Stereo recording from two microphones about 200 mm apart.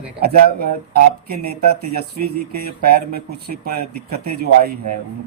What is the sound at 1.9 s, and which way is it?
Speech, 50° right (ahead or behind).